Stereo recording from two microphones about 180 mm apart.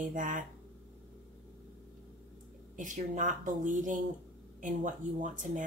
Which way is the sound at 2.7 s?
45° right (ahead or behind).